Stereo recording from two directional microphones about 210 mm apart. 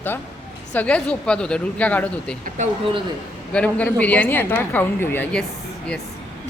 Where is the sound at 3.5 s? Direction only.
5° left (ahead or behind).